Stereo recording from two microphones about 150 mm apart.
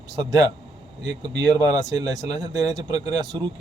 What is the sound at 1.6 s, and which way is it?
Speech, 25° right (ahead or behind).